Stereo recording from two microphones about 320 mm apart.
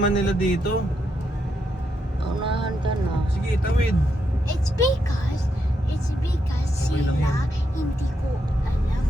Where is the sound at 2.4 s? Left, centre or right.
Centre.